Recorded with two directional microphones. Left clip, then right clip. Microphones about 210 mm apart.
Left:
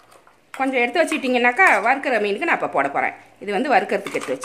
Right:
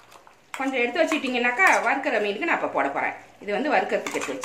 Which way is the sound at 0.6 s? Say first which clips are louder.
Left 4 dB; 55° left (ahead or behind).